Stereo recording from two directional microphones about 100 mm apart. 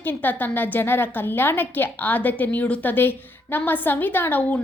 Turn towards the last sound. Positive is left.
turn(degrees=15)  # may be behind; listen again after turning